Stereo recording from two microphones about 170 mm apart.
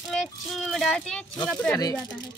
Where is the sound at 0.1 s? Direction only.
Centre (ahead or behind).